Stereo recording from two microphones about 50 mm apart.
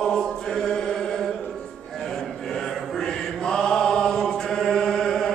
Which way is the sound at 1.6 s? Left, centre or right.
Centre.